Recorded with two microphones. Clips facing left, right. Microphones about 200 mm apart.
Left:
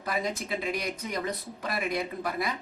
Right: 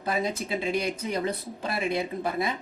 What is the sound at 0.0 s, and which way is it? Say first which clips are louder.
Speech: right 3 dB; 25° right (ahead or behind).